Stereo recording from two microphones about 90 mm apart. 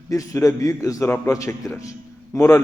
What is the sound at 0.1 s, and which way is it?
A man's voice, 35° left (ahead or behind).